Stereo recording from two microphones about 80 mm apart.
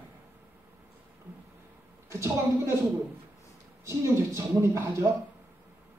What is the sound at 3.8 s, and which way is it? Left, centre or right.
Speech, right.